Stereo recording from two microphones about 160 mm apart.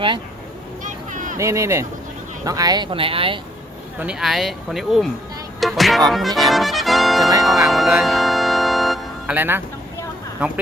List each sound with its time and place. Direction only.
0.9 s a sound: 55° right (ahead or behind)
1.4 s speech: 20° right (ahead or behind); by 3.4 s 35° right (ahead or behind)
3.9 s speech: 5° right (ahead or behind)
5.5 s music: centre (ahead or behind)
6.1 s speech: centre (ahead or behind)
7.7 s music: centre (ahead or behind)
9.3 s speech: 10° right (ahead or behind)